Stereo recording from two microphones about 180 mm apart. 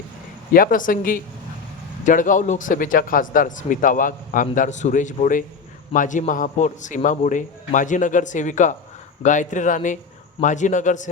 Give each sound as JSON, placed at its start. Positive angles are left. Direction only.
{"t": 0.5, "sound": "speech", "side_deg": 50}